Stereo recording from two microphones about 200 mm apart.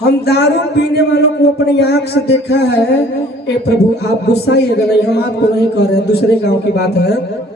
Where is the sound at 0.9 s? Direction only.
55° left (ahead or behind).